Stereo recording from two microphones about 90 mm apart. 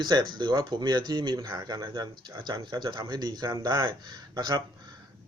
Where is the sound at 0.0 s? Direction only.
55° right (ahead or behind).